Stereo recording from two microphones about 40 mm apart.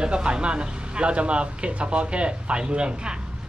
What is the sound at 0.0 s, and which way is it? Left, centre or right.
Speech, right.